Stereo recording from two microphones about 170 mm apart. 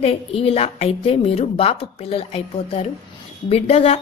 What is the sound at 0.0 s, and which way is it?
A woman's voice, 35° left (ahead or behind).